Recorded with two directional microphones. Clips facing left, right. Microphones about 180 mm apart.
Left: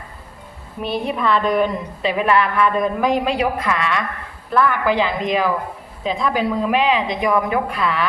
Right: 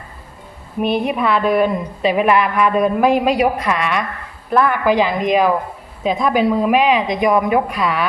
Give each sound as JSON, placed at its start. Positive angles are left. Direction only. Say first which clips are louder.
{"t": 0.8, "sound": "a woman's voice", "louder": "right 5 dB", "side_deg": -15}